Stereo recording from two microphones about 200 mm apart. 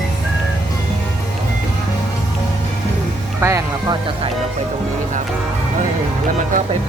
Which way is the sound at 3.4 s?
15° right (ahead or behind).